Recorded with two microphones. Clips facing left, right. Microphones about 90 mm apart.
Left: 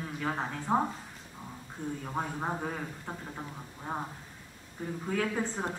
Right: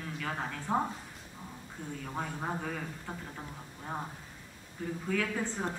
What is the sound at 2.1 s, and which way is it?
Speech, 30° left (ahead or behind).